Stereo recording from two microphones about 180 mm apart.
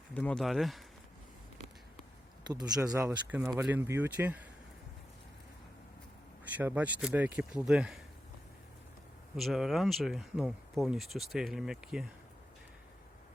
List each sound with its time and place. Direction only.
0.1 s speech: 5° left (ahead or behind)
2.9 s speech: 20° right (ahead or behind)
6.4 s speech: 10° right (ahead or behind)
9.3 s speech: centre (ahead or behind)